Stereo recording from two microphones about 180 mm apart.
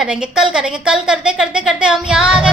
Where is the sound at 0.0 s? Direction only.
5° right (ahead or behind).